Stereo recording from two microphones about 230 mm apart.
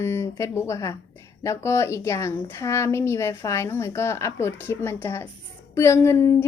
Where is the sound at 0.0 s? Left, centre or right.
Centre.